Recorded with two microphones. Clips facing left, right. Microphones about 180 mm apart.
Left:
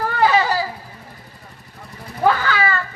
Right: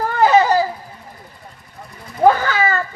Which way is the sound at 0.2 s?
45° right (ahead or behind).